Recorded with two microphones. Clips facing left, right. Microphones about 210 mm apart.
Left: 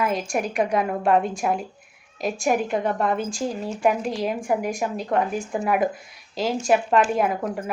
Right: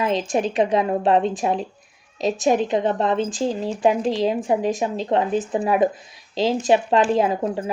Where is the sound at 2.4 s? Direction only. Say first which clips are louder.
Right 3 dB; 20° right (ahead or behind).